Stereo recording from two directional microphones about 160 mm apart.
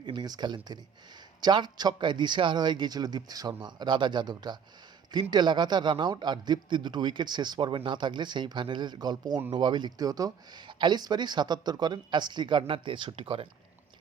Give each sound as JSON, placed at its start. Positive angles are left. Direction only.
{"t": 0.0, "sound": "speech", "side_deg": -25}